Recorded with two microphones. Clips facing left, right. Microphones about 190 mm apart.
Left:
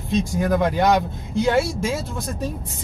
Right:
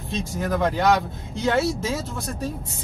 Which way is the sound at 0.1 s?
15° left (ahead or behind).